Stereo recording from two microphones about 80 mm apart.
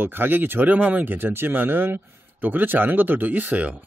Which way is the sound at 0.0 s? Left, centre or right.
Right.